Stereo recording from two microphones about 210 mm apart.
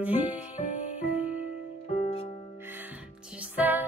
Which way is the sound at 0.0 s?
10° right (ahead or behind).